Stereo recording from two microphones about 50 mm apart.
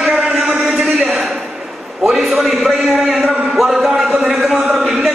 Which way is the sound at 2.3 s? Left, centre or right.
Centre.